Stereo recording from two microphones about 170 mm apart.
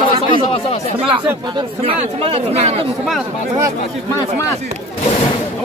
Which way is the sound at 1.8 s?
35° right (ahead or behind).